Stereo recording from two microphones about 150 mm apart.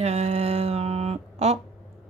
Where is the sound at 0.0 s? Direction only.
45° right (ahead or behind).